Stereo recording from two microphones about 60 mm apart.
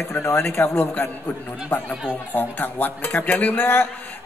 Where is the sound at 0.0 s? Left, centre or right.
Left.